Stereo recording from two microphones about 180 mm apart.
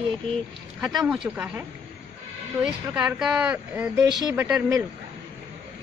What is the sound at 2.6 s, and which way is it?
Speech, 10° right (ahead or behind).